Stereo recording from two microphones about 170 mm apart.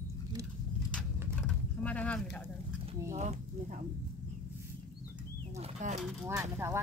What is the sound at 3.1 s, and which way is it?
Speech, 45° right (ahead or behind).